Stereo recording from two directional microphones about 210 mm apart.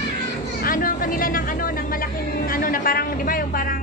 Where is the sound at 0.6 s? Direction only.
40° left (ahead or behind).